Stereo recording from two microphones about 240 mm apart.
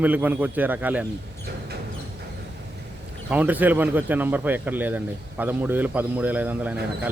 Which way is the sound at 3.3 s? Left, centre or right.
Centre.